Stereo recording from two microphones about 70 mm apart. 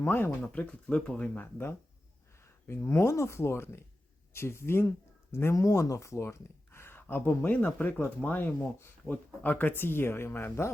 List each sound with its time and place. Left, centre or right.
0.0 s speech: left
2.4 s speech: left
5.5 s speech: left